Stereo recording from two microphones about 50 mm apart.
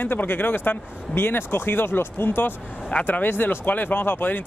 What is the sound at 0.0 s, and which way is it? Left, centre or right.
Speech, left.